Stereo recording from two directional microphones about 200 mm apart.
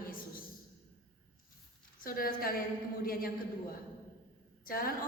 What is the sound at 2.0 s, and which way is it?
A woman's voice, 45° left (ahead or behind).